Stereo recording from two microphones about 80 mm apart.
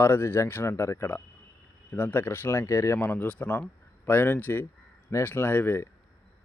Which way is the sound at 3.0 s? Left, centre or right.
Centre.